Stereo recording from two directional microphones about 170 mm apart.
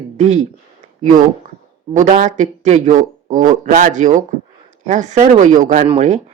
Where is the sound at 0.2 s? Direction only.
45° right (ahead or behind).